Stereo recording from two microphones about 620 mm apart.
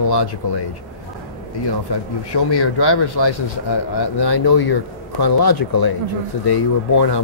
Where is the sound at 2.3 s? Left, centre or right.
Left.